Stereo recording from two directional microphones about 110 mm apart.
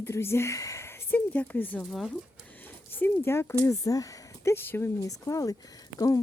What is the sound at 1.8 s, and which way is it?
Speech, centre (ahead or behind).